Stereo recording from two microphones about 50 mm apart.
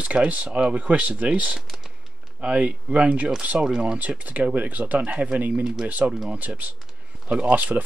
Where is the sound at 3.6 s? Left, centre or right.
Centre.